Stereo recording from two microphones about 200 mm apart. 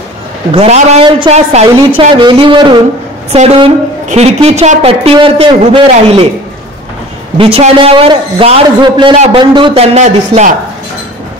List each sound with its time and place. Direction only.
0.5 s a woman's voice: 30° right (ahead or behind)
7.3 s a man's voice: 30° right (ahead or behind)